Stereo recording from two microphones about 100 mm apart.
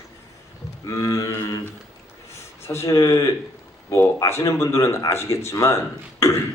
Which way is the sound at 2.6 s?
30° left (ahead or behind).